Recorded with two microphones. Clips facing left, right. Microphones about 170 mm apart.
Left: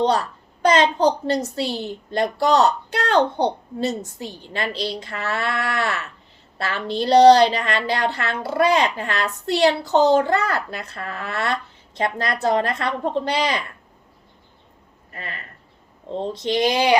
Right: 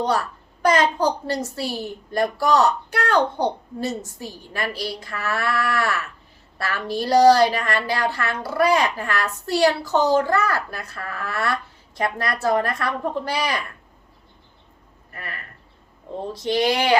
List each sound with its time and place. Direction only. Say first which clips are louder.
0.0 s a child's voice: left 3 dB; 20° left (ahead or behind)
15.1 s speech: left 1 dB; 20° left (ahead or behind)